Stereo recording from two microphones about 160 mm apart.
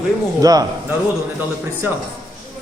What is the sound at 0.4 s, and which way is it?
Speech, 20° right (ahead or behind).